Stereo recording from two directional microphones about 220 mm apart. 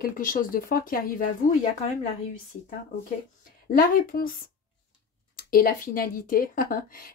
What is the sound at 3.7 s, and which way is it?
Speech, 40° left (ahead or behind).